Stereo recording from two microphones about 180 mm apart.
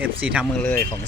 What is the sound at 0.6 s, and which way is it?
Speech, 10° left (ahead or behind).